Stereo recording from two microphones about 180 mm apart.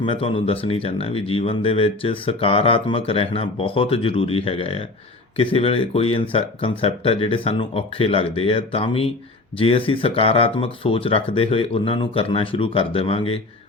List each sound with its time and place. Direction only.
0.0 s speech: 30° left (ahead or behind)